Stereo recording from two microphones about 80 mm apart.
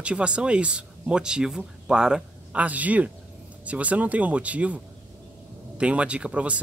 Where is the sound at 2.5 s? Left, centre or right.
Centre.